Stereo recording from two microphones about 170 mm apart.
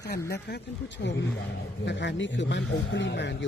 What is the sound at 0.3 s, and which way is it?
Speech, 75° left (ahead or behind).